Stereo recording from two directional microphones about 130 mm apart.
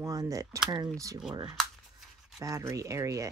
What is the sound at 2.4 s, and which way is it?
Speech, 25° right (ahead or behind).